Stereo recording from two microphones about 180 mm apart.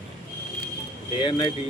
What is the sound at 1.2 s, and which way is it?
Speech, 25° left (ahead or behind).